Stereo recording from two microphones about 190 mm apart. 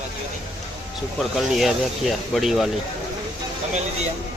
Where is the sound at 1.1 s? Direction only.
Centre (ahead or behind).